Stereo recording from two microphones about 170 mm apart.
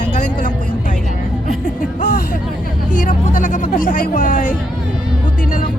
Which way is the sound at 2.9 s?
55° left (ahead or behind).